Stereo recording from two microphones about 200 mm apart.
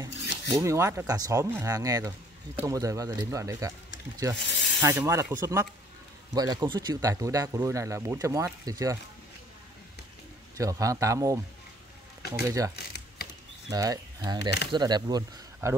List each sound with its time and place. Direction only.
0.0 s speech: 15° right (ahead or behind)
4.4 s speech: 60° left (ahead or behind)
4.8 s speech: 15° right (ahead or behind)
10.6 s speech: 15° right (ahead or behind)